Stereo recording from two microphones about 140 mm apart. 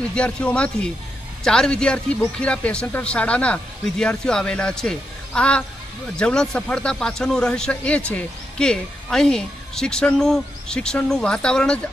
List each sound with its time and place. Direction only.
0.1 s speech: 10° left (ahead or behind)